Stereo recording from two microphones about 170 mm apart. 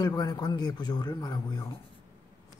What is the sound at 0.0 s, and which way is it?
Speech, 25° left (ahead or behind).